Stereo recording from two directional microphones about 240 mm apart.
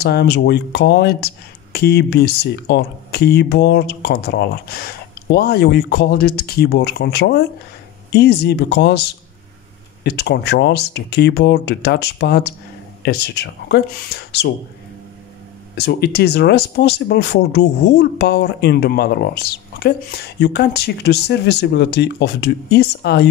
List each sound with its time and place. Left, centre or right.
0.0 s speech: left
10.0 s speech: left
15.7 s speech: left